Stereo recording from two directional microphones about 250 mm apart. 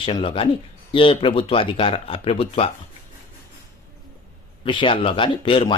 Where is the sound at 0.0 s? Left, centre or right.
Left.